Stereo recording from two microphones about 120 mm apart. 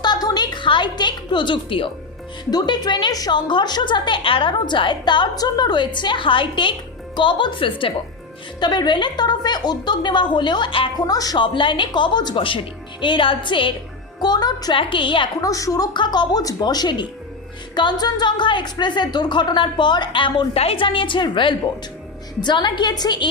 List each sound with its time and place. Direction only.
0.0 s a sound: 35° left (ahead or behind)
2.4 s a woman's voice: 35° left (ahead or behind)
10.9 s a woman's voice: 30° left (ahead or behind)
14.8 s a woman's voice: 45° left (ahead or behind)
15.4 s a woman's voice: 30° left (ahead or behind)